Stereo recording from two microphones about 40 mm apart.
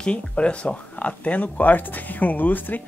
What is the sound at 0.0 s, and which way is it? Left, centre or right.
Speech, left.